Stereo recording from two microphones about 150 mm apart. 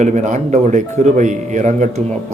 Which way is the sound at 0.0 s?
55° right (ahead or behind).